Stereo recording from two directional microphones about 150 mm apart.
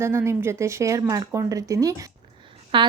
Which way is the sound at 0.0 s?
15° right (ahead or behind).